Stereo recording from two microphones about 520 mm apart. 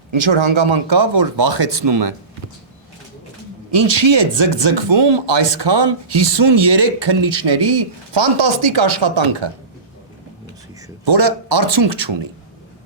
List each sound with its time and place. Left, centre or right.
0.1 s speech: right
3.8 s speech: right
11.0 s speech: right